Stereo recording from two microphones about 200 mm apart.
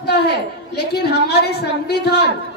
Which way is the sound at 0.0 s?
55° left (ahead or behind).